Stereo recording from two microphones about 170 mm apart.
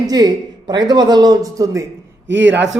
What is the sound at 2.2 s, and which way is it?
Speech, 90° right.